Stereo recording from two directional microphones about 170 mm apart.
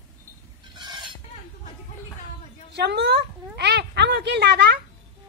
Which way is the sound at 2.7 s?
80° right.